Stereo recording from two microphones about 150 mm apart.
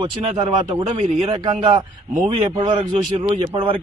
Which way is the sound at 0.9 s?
45° right (ahead or behind).